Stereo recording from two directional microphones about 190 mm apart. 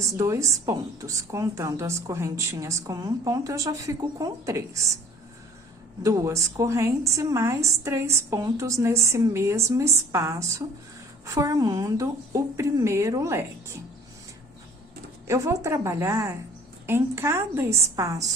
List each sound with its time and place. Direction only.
0.0 s a woman's voice: 15° right (ahead or behind)
6.0 s a woman's voice: 15° right (ahead or behind)
15.3 s a woman's voice: 15° right (ahead or behind)